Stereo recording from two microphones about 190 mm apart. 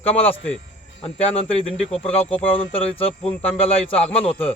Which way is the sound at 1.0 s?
35° left (ahead or behind).